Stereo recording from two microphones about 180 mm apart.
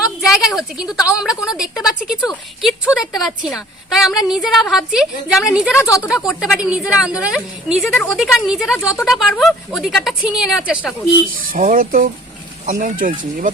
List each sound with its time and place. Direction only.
0.0 s a woman's voice: centre (ahead or behind)
5.8 s speech: 15° left (ahead or behind)
6.1 s a woman's voice: centre (ahead or behind)
11.5 s speech: 50° right (ahead or behind)